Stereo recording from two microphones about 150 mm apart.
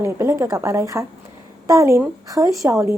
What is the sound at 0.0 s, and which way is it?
A woman's voice, 15° right (ahead or behind).